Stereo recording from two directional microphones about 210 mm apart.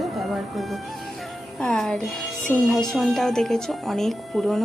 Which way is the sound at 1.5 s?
Centre (ahead or behind).